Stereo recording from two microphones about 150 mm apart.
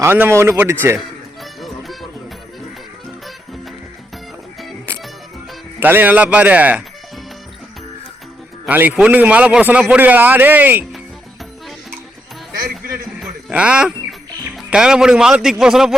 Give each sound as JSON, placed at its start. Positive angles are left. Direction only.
{"t": 0.0, "sound": "a man's voice", "side_deg": -15}
{"t": 1.6, "sound": "music", "side_deg": 0}
{"t": 5.8, "sound": "a man's voice", "side_deg": -10}
{"t": 8.6, "sound": "a man's voice", "side_deg": -10}
{"t": 13.1, "sound": "speech", "side_deg": -5}